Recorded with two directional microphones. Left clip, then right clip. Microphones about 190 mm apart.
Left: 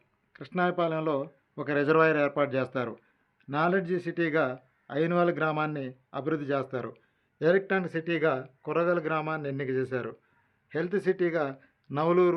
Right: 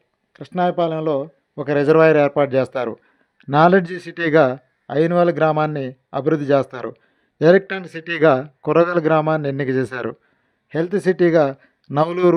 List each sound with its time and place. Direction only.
0.3 s speech: 40° right (ahead or behind)
3.3 s a man's voice: 60° right (ahead or behind)
10.7 s a man's voice: 45° right (ahead or behind)